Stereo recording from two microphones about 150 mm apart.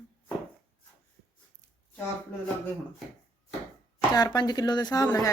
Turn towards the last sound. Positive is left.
turn(degrees=25)  # may be behind; listen again after turning